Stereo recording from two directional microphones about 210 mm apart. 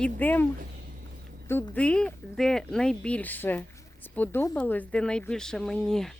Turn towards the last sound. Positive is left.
turn(degrees=0)  # may be behind; listen again after turning